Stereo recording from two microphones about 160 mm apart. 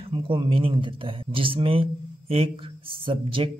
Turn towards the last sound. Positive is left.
turn(degrees=-35)  # may be behind; listen again after turning